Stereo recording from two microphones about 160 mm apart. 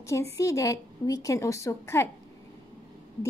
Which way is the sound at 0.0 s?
20° left (ahead or behind).